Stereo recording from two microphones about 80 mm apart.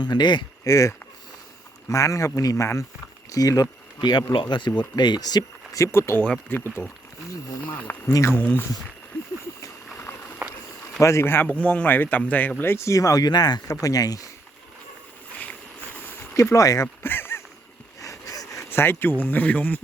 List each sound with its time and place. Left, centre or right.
0.0 s speech: left
0.6 s speech: left
5.8 s speech: left
6.5 s speech: left
7.3 s speech: left
9.6 s patter: left
11.0 s speech: left
11.4 s speech: centre
12.7 s speech: left
16.3 s speech: left
16.8 s honk: left
18.0 s a sound: left
18.7 s speech: left